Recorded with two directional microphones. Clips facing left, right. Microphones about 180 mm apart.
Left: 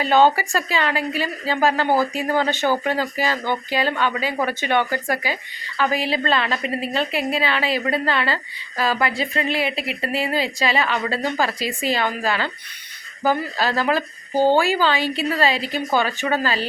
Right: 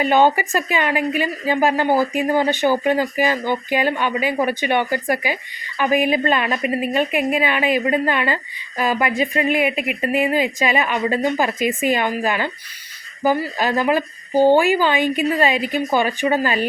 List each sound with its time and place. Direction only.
0.0 s a woman's voice: 15° right (ahead or behind)